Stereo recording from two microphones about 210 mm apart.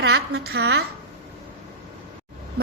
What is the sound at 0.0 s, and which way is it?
Speech, 55° right (ahead or behind).